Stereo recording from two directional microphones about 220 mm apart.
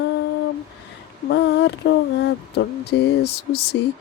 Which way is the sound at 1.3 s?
50° left (ahead or behind).